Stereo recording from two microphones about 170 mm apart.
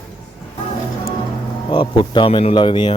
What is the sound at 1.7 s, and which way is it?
Speech, 30° left (ahead or behind).